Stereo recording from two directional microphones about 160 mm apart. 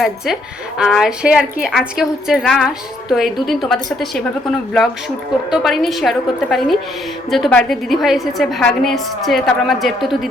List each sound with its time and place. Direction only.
0.8 s a woman's voice: 5° right (ahead or behind)